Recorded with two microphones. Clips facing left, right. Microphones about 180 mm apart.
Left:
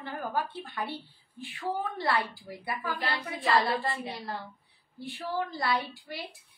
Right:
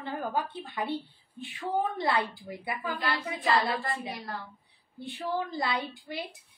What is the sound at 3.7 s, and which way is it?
Speech, 30° left (ahead or behind).